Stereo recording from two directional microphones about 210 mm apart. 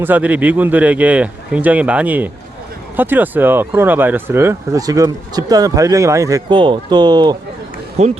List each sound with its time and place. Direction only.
0.0 s speech: 10° right (ahead or behind)
8.0 s speech: 30° right (ahead or behind)